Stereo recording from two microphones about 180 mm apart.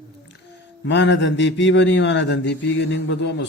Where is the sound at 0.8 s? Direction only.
80° left.